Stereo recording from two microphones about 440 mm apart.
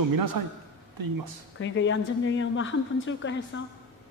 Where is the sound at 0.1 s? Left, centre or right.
Right.